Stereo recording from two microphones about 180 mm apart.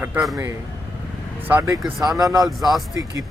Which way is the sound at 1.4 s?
10° right (ahead or behind).